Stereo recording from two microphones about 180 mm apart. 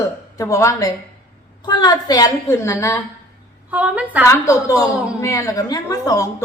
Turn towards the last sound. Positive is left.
turn(degrees=20)  # may be behind; listen again after turning